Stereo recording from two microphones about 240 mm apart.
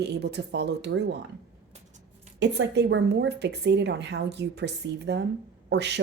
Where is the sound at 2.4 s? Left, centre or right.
Right.